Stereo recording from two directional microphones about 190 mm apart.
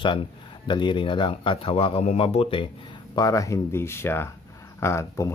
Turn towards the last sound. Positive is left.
turn(degrees=15)  # may be behind; listen again after turning